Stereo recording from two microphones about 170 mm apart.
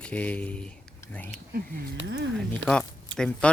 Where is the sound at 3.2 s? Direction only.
5° left (ahead or behind).